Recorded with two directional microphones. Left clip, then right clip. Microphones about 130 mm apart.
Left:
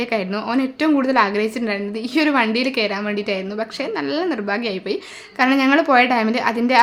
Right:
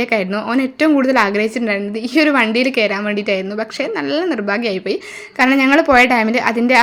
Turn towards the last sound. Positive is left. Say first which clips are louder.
# right 4 dB
turn(degrees=-25)  # may be behind; listen again after turning